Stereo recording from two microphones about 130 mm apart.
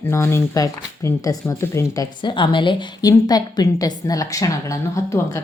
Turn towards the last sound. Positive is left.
turn(degrees=25)  # may be behind; listen again after turning